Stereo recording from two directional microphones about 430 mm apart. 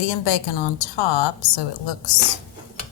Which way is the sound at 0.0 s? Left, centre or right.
Left.